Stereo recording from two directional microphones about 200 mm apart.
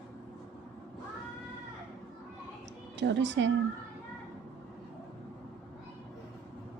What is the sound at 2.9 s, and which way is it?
Speech, 60° right (ahead or behind).